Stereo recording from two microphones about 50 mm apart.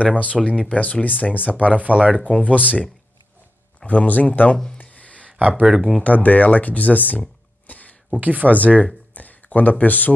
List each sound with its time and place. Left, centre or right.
0.0 s speech: left
1.7 s speech: right
2.1 s speech: left
3.8 s speech: left
4.7 s a sound: left
5.2 s a sound: right
5.7 s speech: centre
6.0 s speech: left
8.2 s speech: right
8.5 s speech: left